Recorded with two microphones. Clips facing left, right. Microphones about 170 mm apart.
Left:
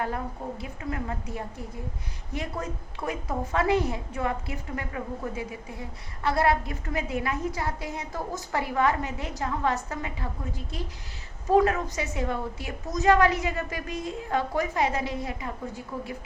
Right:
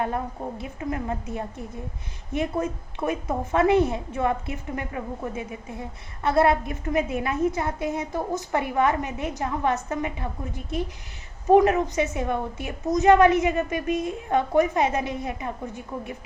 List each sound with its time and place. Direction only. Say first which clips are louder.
0.6 s a woman's voice: right 5 dB; 25° right (ahead or behind)